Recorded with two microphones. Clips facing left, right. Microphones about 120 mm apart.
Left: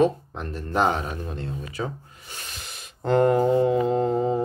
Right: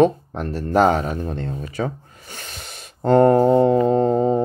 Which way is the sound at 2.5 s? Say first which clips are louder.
Right 3 dB; 35° right (ahead or behind).